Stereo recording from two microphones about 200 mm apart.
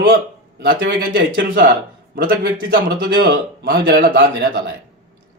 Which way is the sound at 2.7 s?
50° right (ahead or behind).